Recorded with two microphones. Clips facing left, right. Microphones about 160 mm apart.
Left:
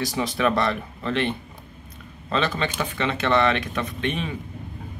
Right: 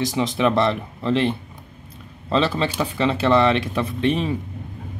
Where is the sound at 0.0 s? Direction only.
25° right (ahead or behind).